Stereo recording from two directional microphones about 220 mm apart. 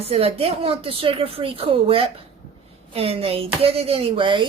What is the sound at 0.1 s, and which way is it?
Speech, 25° right (ahead or behind).